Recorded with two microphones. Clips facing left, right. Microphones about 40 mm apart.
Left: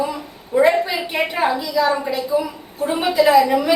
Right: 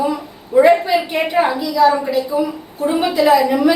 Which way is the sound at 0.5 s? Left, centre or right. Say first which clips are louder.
Right 4 dB; centre.